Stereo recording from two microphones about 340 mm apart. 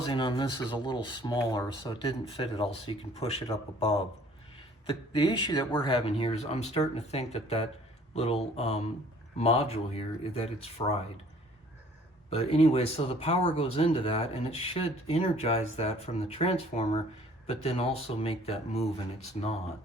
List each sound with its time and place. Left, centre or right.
0.0 s speech: centre
12.3 s speech: centre